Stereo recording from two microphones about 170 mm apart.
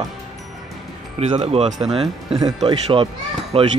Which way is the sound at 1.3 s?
35° right (ahead or behind).